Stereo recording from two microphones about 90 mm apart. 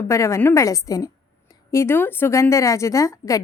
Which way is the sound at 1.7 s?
30° left (ahead or behind).